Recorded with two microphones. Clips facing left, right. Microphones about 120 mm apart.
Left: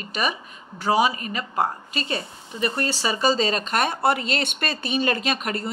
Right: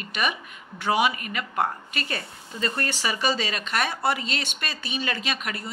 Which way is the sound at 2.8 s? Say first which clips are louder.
Left 5 dB; 30° left (ahead or behind).